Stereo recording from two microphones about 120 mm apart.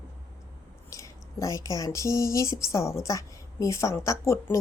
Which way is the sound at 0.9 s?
25° left (ahead or behind).